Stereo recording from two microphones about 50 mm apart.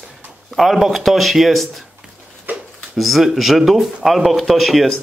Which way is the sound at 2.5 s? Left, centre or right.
Right.